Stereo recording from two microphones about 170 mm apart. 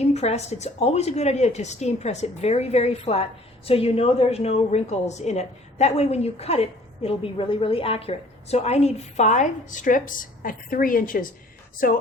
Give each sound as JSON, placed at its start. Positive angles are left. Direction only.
{"t": 0.0, "sound": "a woman's voice", "side_deg": 40}